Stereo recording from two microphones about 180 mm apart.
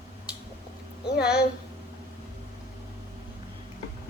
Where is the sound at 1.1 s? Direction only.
5° right (ahead or behind).